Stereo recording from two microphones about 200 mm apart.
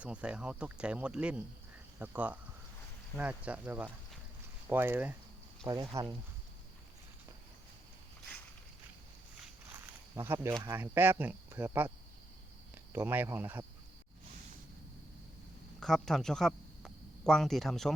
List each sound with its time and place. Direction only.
0.0 s speech: 5° right (ahead or behind)
9.7 s snake: 10° right (ahead or behind)
10.6 s speech: 10° right (ahead or behind)
12.9 s speech: 10° right (ahead or behind)
15.8 s speech: centre (ahead or behind)